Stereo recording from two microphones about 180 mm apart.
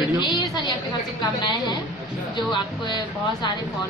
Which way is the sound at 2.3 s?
25° left (ahead or behind).